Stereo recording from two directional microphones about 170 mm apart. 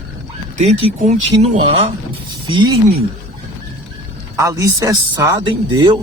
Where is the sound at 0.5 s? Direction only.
45° right (ahead or behind).